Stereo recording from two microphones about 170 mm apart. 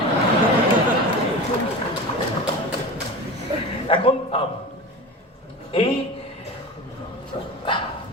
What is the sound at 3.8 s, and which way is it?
Speech, 30° left (ahead or behind).